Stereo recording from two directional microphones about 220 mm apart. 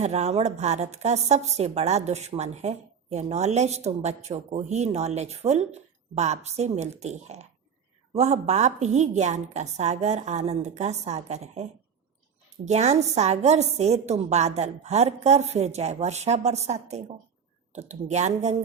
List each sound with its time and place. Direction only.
0.0 s a woman's voice: 30° right (ahead or behind)